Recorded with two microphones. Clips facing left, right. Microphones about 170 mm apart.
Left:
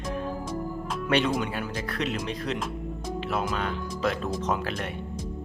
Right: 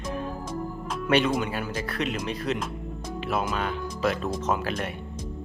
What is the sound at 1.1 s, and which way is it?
Speech, 5° right (ahead or behind).